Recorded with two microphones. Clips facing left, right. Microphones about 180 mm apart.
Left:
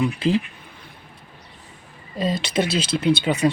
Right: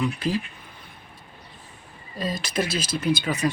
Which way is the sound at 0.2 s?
25° left (ahead or behind).